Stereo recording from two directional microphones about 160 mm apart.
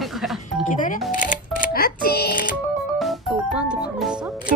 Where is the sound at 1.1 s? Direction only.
60° left (ahead or behind); by 2.4 s 75° left (ahead or behind).